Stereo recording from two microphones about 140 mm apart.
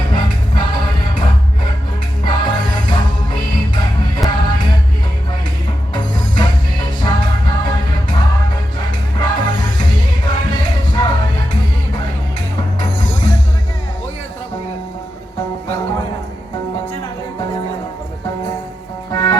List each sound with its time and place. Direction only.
0.1 s music: 30° left (ahead or behind)
2.2 s music: 30° left (ahead or behind)
5.9 s music: 30° left (ahead or behind)
9.2 s music: 35° left (ahead or behind)
12.8 s music: 35° left (ahead or behind)
19.1 s music: 30° left (ahead or behind)